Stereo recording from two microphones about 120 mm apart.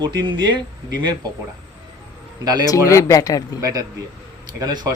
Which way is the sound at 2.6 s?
25° left (ahead or behind).